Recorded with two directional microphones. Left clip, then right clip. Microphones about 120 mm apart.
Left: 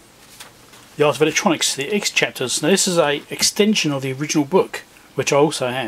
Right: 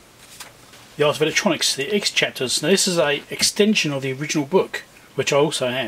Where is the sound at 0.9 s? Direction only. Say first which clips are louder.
Left 2 dB; 25° left (ahead or behind).